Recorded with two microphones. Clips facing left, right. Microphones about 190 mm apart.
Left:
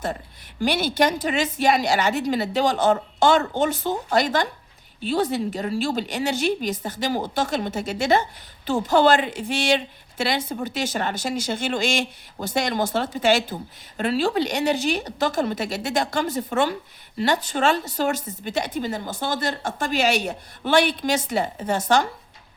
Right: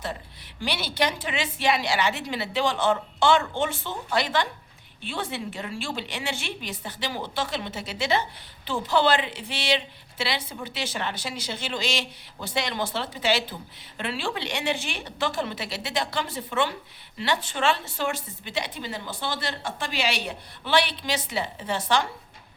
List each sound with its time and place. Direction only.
0.6 s a woman's voice: 45° left (ahead or behind)